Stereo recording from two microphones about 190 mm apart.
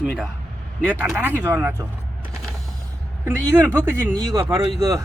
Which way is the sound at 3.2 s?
10° right (ahead or behind).